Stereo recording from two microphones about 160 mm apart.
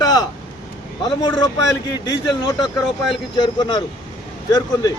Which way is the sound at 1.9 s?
25° left (ahead or behind).